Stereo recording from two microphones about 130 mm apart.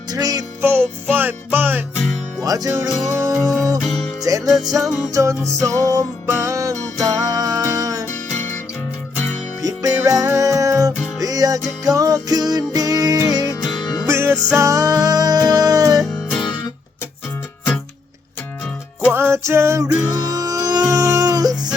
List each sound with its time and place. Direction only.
0.1 s music: 30° right (ahead or behind)
0.6 s music: 15° right (ahead or behind)
2.4 s music: 25° right (ahead or behind)
9.6 s music: 25° right (ahead or behind)
13.7 s music: 35° left (ahead or behind)
14.1 s music: 20° right (ahead or behind)
19.1 s music: 20° right (ahead or behind)